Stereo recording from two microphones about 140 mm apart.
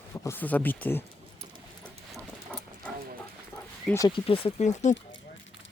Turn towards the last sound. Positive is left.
turn(degrees=55)  # may be behind; listen again after turning